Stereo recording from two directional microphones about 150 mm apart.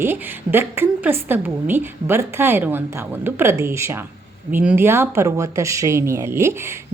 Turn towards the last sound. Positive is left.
turn(degrees=-15)  # may be behind; listen again after turning